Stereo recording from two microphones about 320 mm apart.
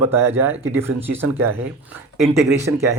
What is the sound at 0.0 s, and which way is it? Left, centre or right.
Speech, centre.